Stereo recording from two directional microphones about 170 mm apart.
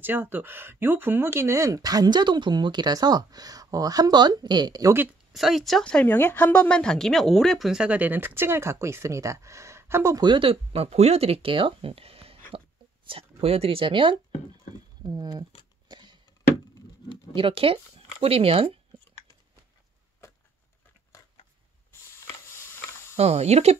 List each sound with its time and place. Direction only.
0.0 s speech: 10° right (ahead or behind)
5.3 s speech: centre (ahead or behind); by 15.4 s 25° right (ahead or behind)
15.9 s a sound: 25° right (ahead or behind)
17.3 s speech: 30° right (ahead or behind)
23.1 s speech: 40° right (ahead or behind)